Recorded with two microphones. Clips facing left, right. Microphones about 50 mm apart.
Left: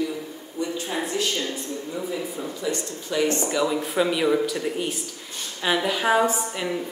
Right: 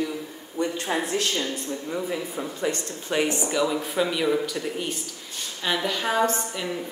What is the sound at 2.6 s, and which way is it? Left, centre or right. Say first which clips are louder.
Speech: right 1 dB; right.